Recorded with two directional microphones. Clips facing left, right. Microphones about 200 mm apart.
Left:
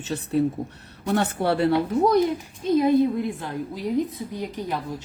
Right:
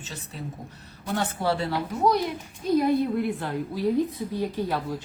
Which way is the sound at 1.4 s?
60° left (ahead or behind).